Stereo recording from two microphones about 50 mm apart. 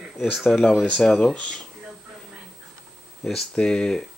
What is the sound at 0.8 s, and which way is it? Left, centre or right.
Speech, centre.